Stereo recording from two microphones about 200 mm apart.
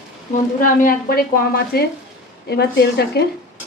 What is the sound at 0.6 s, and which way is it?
Speech, 45° left (ahead or behind).